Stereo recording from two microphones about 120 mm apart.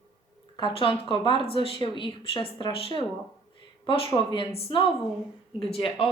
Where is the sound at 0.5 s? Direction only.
45° left (ahead or behind).